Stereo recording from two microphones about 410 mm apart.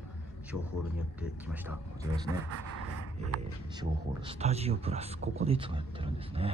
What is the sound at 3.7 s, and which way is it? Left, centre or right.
Speech, centre.